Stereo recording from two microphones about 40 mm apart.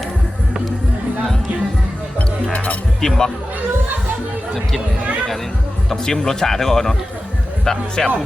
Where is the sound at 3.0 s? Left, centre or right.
Centre.